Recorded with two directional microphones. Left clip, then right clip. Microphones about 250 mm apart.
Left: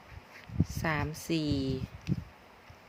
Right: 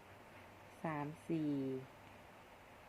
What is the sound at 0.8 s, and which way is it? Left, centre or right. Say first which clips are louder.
Speech: left 9 dB; left.